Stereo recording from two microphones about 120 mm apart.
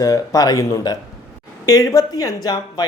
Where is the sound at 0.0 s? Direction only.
30° left (ahead or behind).